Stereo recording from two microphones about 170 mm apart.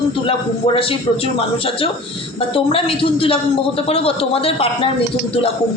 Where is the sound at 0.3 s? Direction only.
35° left (ahead or behind).